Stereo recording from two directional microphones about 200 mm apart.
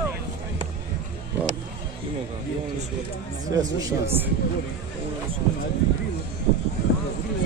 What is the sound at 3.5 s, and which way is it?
Speech, 15° right (ahead or behind).